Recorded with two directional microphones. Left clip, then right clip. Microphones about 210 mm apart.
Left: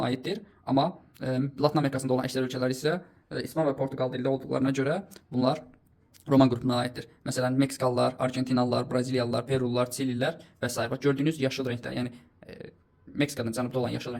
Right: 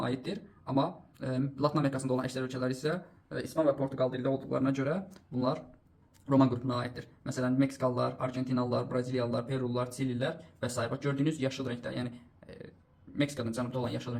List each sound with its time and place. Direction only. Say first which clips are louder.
0.0 s speech: left 5 dB; 35° left (ahead or behind)